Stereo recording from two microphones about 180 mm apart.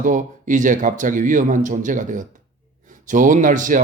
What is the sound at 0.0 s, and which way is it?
A man's voice, 45° right (ahead or behind).